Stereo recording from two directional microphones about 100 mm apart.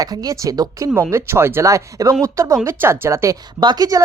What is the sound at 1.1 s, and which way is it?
A woman's voice, 25° right (ahead or behind).